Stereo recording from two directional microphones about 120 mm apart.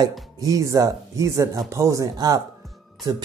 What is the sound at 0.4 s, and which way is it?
A man's voice, 30° right (ahead or behind).